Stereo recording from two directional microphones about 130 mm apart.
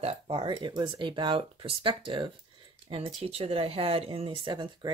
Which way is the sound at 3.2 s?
50° right (ahead or behind).